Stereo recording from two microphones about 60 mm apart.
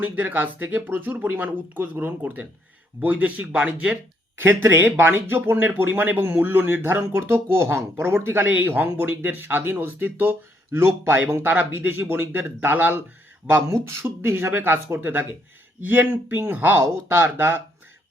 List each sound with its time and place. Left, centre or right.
0.0 s speech: right
4.4 s speech: right
10.7 s speech: right
11.4 s speech: right
14.2 s speech: right